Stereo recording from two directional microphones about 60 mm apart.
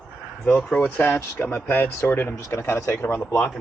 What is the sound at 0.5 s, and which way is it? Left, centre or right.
Speech, left.